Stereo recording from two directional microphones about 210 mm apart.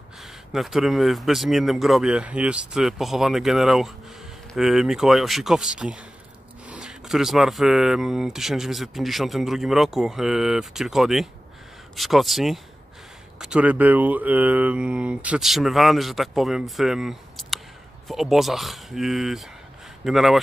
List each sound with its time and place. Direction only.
0.2 s speech: centre (ahead or behind)